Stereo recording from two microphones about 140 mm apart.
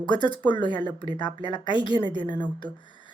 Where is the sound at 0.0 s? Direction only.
35° left (ahead or behind).